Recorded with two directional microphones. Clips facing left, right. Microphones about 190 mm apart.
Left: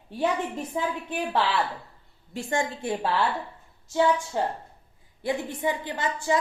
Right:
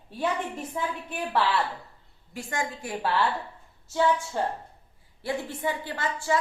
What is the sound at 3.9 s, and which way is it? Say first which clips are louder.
A woman's voice: left 2 dB; 15° left (ahead or behind).